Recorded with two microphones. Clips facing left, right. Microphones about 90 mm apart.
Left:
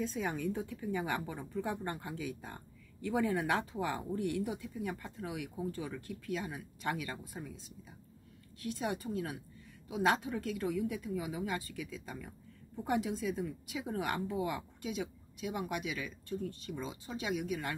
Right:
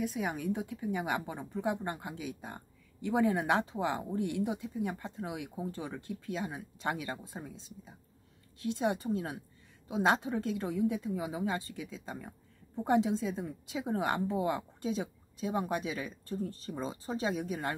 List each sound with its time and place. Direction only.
0.0 s a woman's voice: 10° right (ahead or behind); by 17.7 s 35° right (ahead or behind)